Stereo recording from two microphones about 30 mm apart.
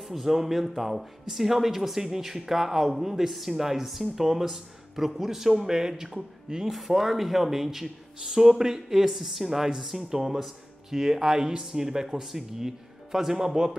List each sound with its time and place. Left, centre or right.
0.1 s speech: centre
6.7 s speech: centre